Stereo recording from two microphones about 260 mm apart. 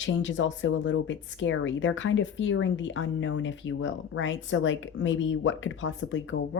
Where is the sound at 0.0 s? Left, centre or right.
Left.